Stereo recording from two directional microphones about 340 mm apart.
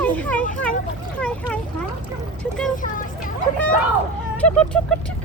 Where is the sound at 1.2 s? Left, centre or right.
Centre.